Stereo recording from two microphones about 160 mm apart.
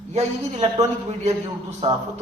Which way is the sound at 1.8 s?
35° right (ahead or behind).